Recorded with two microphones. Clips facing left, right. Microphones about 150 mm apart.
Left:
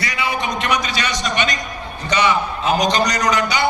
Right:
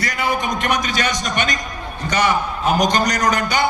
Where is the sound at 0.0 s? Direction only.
50° right (ahead or behind).